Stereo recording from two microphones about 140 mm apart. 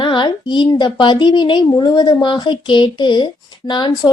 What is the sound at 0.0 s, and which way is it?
A woman's voice, 35° left (ahead or behind).